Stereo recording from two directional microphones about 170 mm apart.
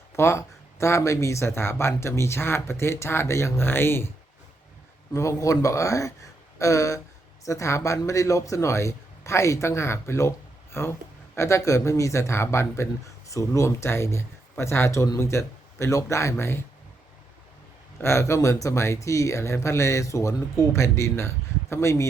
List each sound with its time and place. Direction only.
0.2 s speech: 15° left (ahead or behind)
5.1 s speech: 20° left (ahead or behind)
18.0 s speech: 15° left (ahead or behind)